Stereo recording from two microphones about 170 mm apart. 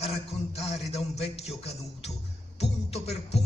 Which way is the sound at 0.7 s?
40° left (ahead or behind).